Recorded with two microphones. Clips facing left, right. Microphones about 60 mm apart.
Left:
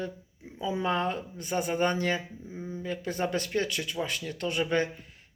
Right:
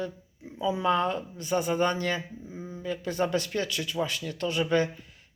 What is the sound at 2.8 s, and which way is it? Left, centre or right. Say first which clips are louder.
Speech: right 3 dB; left.